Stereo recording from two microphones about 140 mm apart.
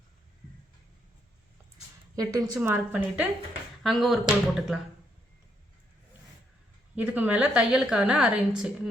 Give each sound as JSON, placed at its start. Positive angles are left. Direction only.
{"t": 2.1, "sound": "a woman's voice", "side_deg": -25}
{"t": 2.6, "sound": "a woman's voice", "side_deg": -15}
{"t": 3.8, "sound": "speech", "side_deg": 0}
{"t": 6.9, "sound": "a woman's voice", "side_deg": -10}